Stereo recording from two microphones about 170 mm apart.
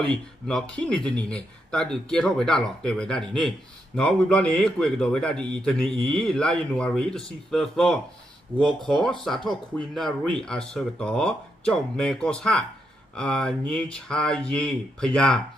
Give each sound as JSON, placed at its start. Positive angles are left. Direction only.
{"t": 0.0, "sound": "a man's voice", "side_deg": 5}